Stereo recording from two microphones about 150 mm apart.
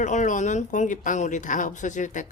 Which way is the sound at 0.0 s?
55° left (ahead or behind).